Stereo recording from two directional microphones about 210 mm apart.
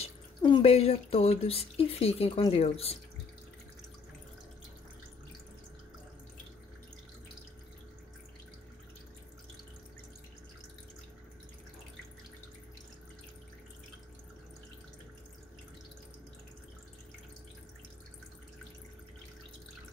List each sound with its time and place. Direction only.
0.0 s speech: 25° left (ahead or behind)